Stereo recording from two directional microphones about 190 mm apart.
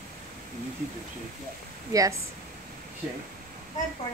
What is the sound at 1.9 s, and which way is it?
Speech, 20° right (ahead or behind).